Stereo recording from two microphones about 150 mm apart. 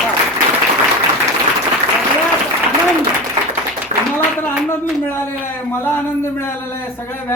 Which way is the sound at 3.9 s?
45° right (ahead or behind).